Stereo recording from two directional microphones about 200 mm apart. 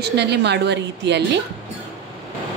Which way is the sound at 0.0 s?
55° right (ahead or behind).